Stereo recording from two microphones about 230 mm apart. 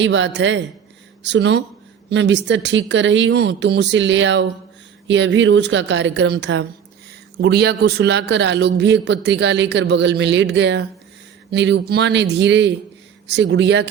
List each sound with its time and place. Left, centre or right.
0.0 s a man's voice: right